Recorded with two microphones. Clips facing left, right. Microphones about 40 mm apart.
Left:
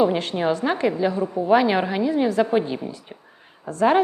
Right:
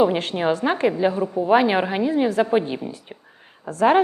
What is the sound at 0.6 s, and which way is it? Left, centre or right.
A woman's voice, centre.